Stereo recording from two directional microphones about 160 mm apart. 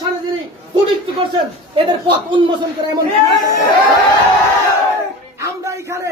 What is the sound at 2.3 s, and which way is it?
Speech, 30° right (ahead or behind).